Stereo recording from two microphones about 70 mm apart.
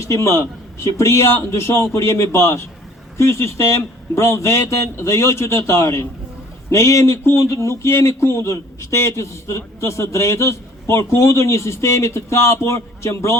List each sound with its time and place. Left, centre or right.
0.0 s a man's voice: left